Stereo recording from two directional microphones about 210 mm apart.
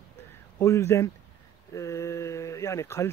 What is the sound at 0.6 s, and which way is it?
Speech, 15° left (ahead or behind).